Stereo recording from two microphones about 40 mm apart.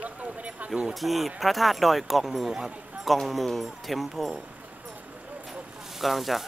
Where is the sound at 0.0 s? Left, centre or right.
Right.